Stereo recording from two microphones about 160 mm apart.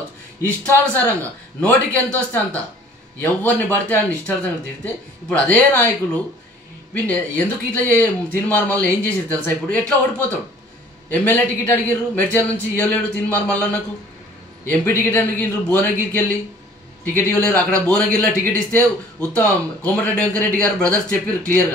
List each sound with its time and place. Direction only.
1.6 s speech: 5° left (ahead or behind)
5.5 s speech: 10° left (ahead or behind)